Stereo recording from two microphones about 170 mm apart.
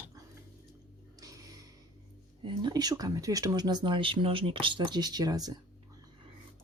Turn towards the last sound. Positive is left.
turn(degrees=-20)  # may be behind; listen again after turning